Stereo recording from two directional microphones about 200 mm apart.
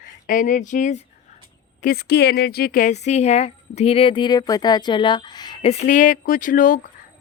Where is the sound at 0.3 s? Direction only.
40° left (ahead or behind).